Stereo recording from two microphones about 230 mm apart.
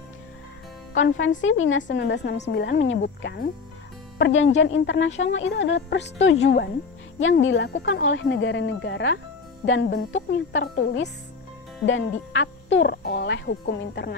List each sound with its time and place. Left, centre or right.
0.9 s music: left
1.4 s speech: left
4.2 s music: left
4.6 s speech: left
9.7 s music: left
11.8 s speech: left